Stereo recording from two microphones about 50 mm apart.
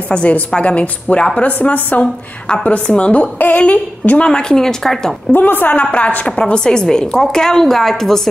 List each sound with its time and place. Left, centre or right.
0.1 s a woman's voice: left
4.3 s a woman's voice: centre
5.3 s a woman's voice: left; by 8.2 s centre